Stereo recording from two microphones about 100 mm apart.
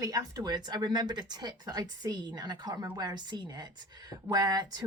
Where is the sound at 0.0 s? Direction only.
40° right (ahead or behind).